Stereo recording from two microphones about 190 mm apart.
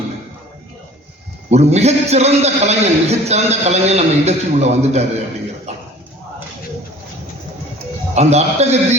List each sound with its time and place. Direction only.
1.5 s a man's voice: 35° right (ahead or behind)
8.1 s a man's voice: 35° right (ahead or behind)